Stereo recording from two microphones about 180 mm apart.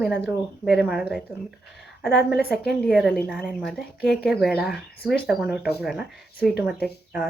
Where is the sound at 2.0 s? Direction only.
5° right (ahead or behind).